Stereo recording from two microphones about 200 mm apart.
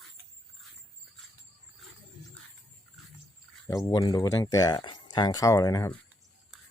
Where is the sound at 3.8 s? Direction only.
20° left (ahead or behind).